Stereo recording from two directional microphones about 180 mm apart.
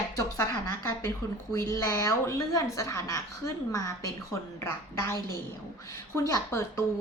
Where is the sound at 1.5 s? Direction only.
15° left (ahead or behind).